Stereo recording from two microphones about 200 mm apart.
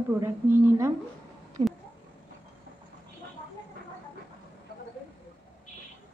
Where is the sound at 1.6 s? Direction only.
35° right (ahead or behind).